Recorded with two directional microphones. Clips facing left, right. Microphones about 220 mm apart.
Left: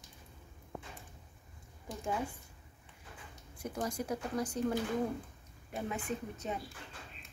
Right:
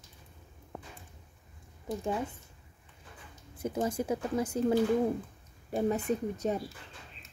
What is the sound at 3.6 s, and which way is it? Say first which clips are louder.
Speech: right 6 dB; 25° right (ahead or behind).